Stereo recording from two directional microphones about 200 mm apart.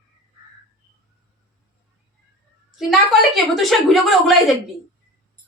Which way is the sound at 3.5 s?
Centre (ahead or behind).